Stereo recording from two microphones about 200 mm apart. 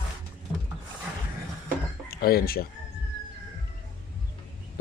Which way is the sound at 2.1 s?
50° left (ahead or behind).